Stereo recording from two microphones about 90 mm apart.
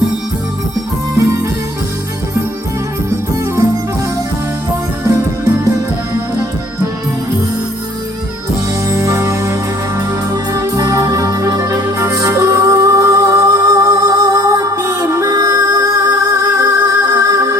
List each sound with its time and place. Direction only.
1.1 s music: 35° right (ahead or behind)
8.9 s music: 35° right (ahead or behind)